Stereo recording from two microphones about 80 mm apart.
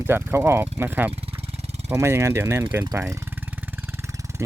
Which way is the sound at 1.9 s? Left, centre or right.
Right.